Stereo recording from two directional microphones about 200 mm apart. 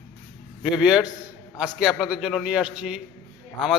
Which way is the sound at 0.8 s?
5° right (ahead or behind).